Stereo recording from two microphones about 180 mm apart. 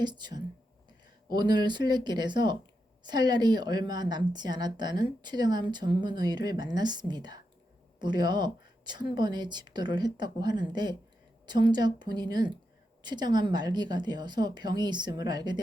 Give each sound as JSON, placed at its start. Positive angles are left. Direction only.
{"t": 0.0, "sound": "a woman's voice", "side_deg": -25}